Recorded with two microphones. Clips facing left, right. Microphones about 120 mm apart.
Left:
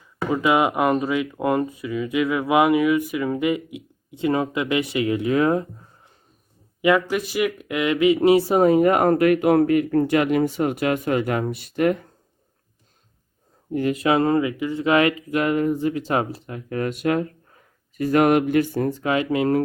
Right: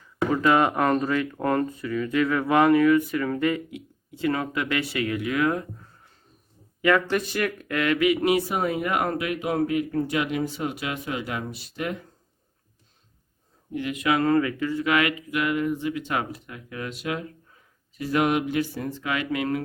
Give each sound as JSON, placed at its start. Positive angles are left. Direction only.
{"t": 0.3, "sound": "speech", "side_deg": 10}
{"t": 7.1, "sound": "speech", "side_deg": 10}
{"t": 13.7, "sound": "speech", "side_deg": 40}
{"t": 19.0, "sound": "speech", "side_deg": 30}